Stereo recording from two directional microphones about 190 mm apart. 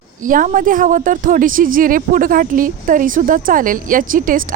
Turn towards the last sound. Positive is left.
turn(degrees=-45)  # may be behind; listen again after turning